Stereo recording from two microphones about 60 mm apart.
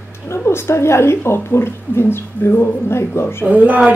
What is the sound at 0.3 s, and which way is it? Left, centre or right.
A woman's voice, left.